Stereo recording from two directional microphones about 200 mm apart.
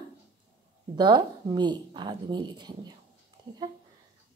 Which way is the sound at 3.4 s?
20° right (ahead or behind).